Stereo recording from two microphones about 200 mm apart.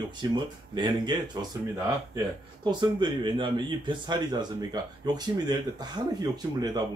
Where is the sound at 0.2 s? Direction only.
20° right (ahead or behind).